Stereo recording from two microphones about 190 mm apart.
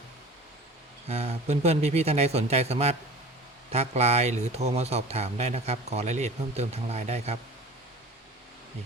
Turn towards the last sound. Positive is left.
turn(degrees=-35)  # may be behind; listen again after turning